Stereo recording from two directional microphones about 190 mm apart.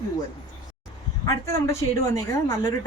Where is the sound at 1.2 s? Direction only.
15° left (ahead or behind).